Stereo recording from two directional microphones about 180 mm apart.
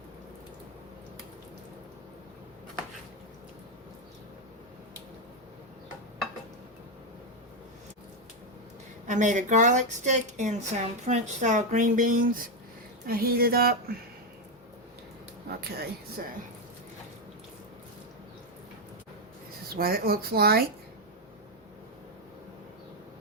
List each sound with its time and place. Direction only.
9.0 s a woman's voice: 45° right (ahead or behind)
15.4 s speech: 60° right (ahead or behind)
19.7 s speech: 55° right (ahead or behind)